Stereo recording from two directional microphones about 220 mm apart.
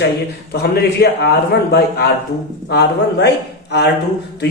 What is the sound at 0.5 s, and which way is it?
A man's voice, 45° left (ahead or behind).